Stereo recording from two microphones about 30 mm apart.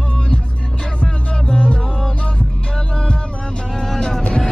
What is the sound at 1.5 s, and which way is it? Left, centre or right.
Music, left.